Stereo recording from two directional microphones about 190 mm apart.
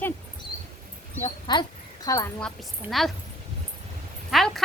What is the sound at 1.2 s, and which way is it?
Speech, 25° left (ahead or behind).